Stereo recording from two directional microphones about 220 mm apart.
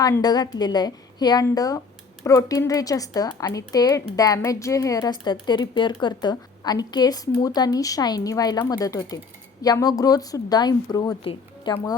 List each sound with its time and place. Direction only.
0.0 s speech: 15° left (ahead or behind)